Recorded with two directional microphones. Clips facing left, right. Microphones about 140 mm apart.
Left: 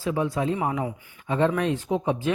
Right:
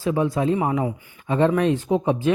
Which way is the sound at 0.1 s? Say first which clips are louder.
Right 4 dB; 30° right (ahead or behind).